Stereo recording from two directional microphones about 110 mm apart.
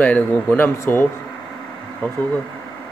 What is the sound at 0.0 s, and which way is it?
A man's voice, 15° left (ahead or behind).